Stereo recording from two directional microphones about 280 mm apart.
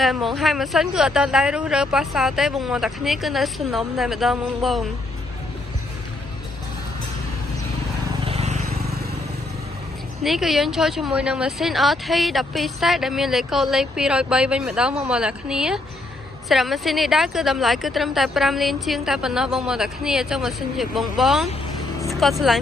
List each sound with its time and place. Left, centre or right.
0.0 s speech: centre
8.1 s vehicle: centre
10.2 s speech: centre